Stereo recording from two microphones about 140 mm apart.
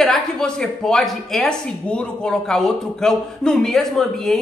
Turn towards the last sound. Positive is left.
turn(degrees=0)  # may be behind; listen again after turning